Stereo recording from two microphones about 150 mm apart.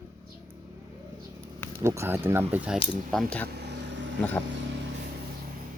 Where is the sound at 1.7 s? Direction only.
20° right (ahead or behind).